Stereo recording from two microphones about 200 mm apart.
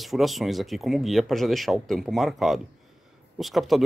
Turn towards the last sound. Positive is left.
turn(degrees=0)  # may be behind; listen again after turning